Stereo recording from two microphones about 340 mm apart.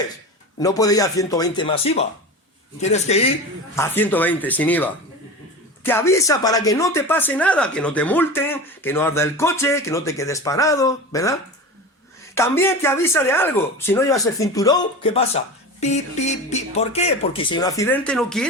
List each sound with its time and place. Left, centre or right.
0.6 s a man's voice: centre
3.8 s speech: centre